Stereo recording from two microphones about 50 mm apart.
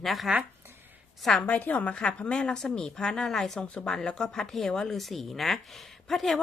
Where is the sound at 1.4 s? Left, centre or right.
Left.